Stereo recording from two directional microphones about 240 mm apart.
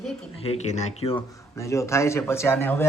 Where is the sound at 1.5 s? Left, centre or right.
Centre.